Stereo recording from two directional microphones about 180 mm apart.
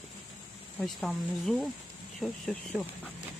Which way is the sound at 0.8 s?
Centre (ahead or behind).